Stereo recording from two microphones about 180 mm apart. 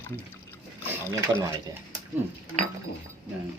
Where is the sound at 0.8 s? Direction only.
15° right (ahead or behind).